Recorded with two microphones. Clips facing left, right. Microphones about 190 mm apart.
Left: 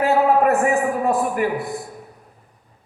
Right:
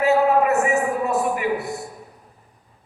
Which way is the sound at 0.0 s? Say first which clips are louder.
Left 1 dB; 55° left (ahead or behind).